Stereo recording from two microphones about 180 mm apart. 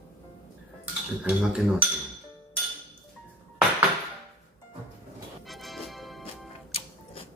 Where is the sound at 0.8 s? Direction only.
5° right (ahead or behind).